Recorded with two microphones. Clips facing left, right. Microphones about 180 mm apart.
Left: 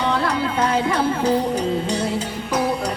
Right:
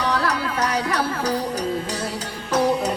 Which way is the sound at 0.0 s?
25° left (ahead or behind).